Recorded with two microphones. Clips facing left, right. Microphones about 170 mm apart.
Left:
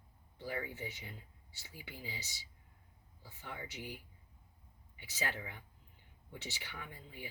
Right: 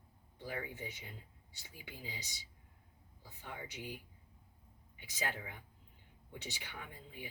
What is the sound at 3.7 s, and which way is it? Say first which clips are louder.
Speech: even; 15° right (ahead or behind).